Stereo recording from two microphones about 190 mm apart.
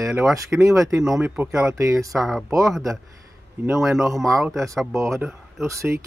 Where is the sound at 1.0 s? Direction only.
5° right (ahead or behind).